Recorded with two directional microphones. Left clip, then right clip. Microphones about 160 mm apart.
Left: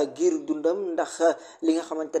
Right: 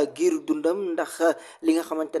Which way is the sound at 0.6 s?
20° right (ahead or behind).